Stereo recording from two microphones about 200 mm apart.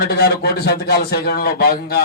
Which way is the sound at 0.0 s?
50° left (ahead or behind).